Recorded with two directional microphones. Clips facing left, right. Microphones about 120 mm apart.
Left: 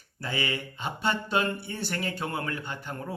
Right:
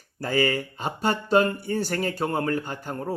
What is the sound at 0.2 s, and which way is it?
Speech, 45° right (ahead or behind).